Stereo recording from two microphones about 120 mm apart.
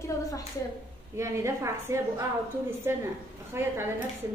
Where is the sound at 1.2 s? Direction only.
25° right (ahead or behind).